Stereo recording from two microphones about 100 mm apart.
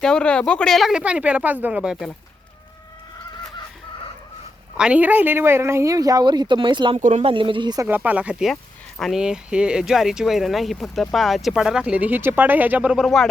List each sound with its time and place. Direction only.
0.0 s speech: 10° left (ahead or behind); by 2.0 s 10° right (ahead or behind)
4.8 s a woman's voice: 15° right (ahead or behind); by 6.9 s 50° right (ahead or behind)
6.9 s speech: 80° right; by 7.8 s 55° right (ahead or behind)
7.9 s speech: 20° right (ahead or behind)
9.0 s speech: centre (ahead or behind)